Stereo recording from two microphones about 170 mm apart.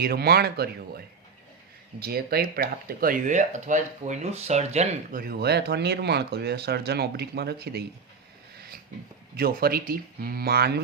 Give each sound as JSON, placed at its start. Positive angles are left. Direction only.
{"t": 0.0, "sound": "speech", "side_deg": -65}
{"t": 5.1, "sound": "speech", "side_deg": -65}
{"t": 9.3, "sound": "speech", "side_deg": -65}